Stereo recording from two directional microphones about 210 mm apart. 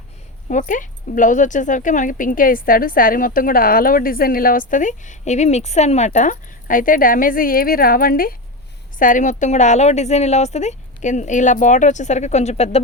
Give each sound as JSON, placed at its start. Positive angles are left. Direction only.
{"t": 0.4, "sound": "speech", "side_deg": 40}